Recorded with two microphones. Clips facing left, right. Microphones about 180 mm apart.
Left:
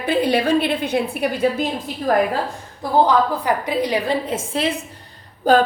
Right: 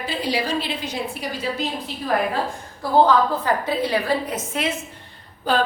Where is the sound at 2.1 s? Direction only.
45° left (ahead or behind).